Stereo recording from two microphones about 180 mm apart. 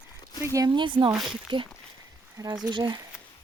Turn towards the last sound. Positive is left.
turn(degrees=-25)  # may be behind; listen again after turning